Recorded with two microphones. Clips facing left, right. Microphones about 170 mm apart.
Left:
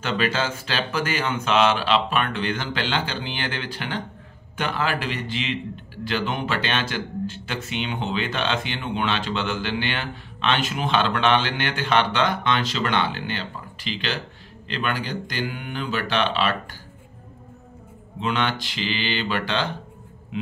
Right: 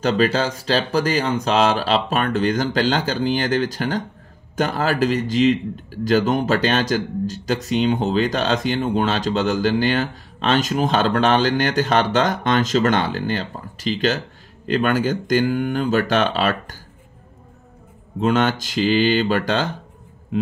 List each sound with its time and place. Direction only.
0.0 s speech: 40° right (ahead or behind)
18.2 s speech: 45° right (ahead or behind)